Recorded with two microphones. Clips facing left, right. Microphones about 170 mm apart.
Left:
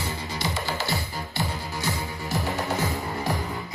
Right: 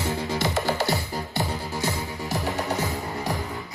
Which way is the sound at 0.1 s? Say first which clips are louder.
Right 5 dB; 55° right (ahead or behind).